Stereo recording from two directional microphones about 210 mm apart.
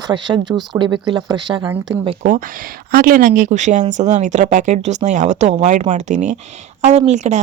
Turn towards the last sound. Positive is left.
turn(degrees=-35)  # may be behind; listen again after turning